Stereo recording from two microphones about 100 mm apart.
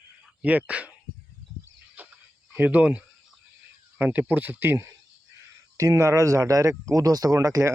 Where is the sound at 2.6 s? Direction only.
15° right (ahead or behind).